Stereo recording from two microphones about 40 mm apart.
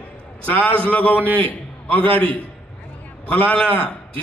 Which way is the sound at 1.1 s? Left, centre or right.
Right.